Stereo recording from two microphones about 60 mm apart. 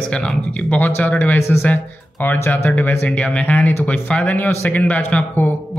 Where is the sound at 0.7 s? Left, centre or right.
Left.